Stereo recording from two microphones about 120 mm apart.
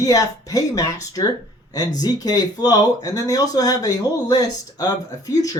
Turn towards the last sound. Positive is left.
turn(degrees=30)  # may be behind; listen again after turning